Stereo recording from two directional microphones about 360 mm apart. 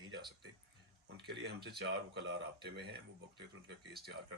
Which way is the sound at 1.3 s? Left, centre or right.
Right.